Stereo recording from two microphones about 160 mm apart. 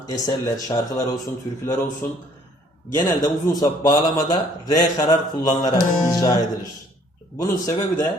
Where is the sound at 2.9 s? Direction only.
25° left (ahead or behind).